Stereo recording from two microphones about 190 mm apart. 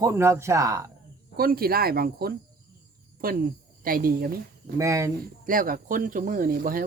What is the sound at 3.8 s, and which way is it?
Speech, 50° right (ahead or behind).